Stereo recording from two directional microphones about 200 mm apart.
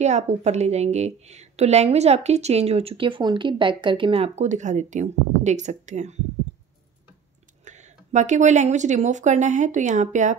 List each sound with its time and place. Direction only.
0.0 s a woman's voice: 35° right (ahead or behind)
7.6 s a woman's voice: 35° right (ahead or behind)